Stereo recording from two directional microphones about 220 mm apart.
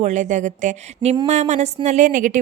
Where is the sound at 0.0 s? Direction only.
35° right (ahead or behind).